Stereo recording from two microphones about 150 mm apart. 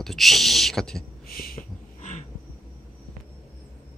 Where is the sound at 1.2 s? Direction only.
80° left.